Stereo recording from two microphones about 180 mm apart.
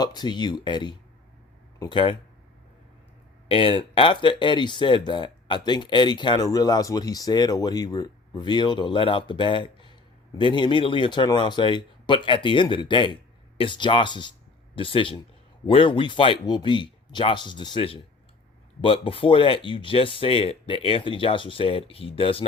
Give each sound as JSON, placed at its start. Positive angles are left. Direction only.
{"t": 0.0, "sound": "speech", "side_deg": 25}
{"t": 3.5, "sound": "speech", "side_deg": 30}